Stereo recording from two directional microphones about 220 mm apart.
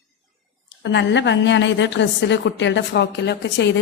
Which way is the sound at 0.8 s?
55° left (ahead or behind).